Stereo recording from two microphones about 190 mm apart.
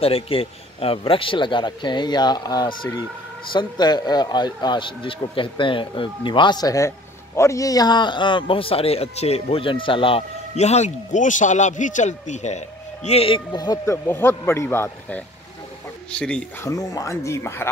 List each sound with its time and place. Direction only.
0.0 s a man's voice: 30° left (ahead or behind); by 16.7 s 5° left (ahead or behind)
16.7 s speech: 15° left (ahead or behind)